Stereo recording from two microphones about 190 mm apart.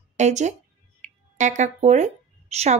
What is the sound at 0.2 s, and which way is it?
A woman's voice, 40° right (ahead or behind).